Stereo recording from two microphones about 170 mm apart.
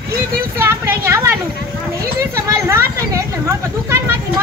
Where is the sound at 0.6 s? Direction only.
15° right (ahead or behind).